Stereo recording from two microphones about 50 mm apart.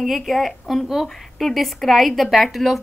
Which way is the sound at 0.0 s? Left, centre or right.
Centre.